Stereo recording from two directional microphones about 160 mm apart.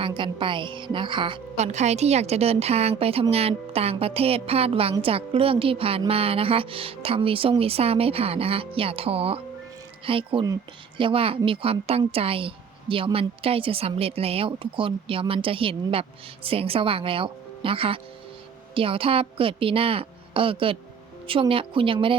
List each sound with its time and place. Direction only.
0.0 s a woman's voice: 30° right (ahead or behind)
1.5 s a woman's voice: 45° right (ahead or behind)